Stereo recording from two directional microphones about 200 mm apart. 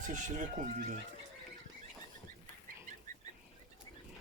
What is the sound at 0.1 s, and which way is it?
Speech, 40° right (ahead or behind).